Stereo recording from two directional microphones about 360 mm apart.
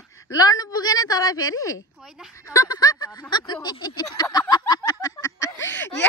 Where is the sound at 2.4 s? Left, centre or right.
Centre.